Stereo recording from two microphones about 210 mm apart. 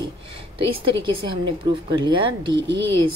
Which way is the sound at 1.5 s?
25° right (ahead or behind).